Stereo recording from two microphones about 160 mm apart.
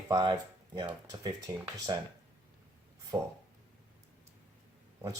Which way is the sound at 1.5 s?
20° right (ahead or behind).